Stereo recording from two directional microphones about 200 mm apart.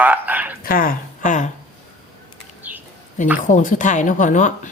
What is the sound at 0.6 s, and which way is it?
Speech, 45° left (ahead or behind).